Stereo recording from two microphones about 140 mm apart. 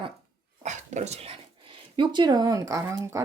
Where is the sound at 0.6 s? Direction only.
60° right (ahead or behind).